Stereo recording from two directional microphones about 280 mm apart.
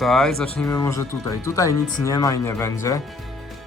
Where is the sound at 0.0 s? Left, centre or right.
Centre.